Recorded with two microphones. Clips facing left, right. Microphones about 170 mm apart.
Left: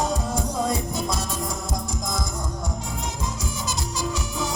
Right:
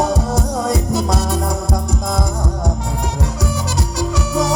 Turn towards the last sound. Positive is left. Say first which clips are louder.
# right 10 dB
turn(degrees=-75)  # may be behind; listen again after turning